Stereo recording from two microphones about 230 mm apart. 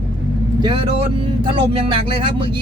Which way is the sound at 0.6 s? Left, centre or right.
Right.